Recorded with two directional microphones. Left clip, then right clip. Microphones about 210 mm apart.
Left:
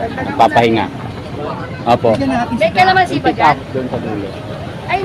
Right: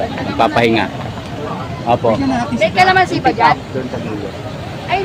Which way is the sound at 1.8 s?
25° left (ahead or behind).